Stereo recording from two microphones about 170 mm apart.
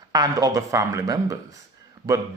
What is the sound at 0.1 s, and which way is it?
Speech, 20° right (ahead or behind).